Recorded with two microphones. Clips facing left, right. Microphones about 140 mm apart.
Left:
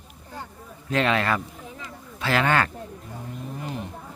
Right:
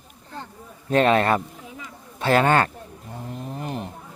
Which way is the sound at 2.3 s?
40° right (ahead or behind).